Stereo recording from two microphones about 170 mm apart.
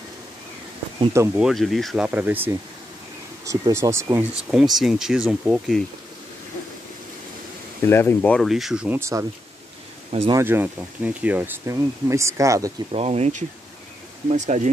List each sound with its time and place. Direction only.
1.1 s speech: 15° right (ahead or behind)
1.4 s speech: centre (ahead or behind)
2.0 s speech: 10° right (ahead or behind)
4.5 s speech: centre (ahead or behind)
7.8 s speech: 15° left (ahead or behind); by 9.2 s 10° right (ahead or behind)
10.4 s speech: 10° right (ahead or behind)
12.9 s speech: 40° right (ahead or behind)